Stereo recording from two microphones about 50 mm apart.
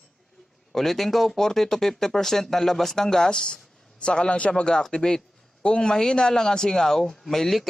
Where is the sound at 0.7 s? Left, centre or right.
Centre.